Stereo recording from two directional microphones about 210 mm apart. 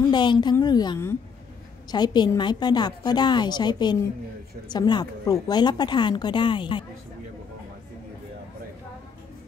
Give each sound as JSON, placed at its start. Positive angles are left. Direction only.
{"t": 0.1, "sound": "a woman's voice", "side_deg": 20}